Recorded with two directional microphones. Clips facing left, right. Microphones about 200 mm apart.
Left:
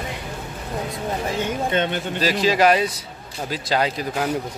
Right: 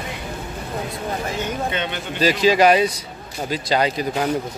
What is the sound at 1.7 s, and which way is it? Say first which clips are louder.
Speech: left 4 dB; 45° left (ahead or behind).